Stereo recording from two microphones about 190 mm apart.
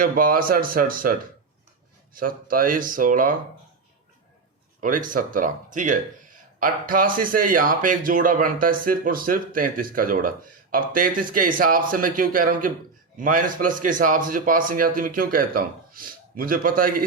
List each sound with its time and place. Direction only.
0.0 s speech: 45° right (ahead or behind)
2.1 s speech: 50° right (ahead or behind)
4.8 s speech: 45° right (ahead or behind)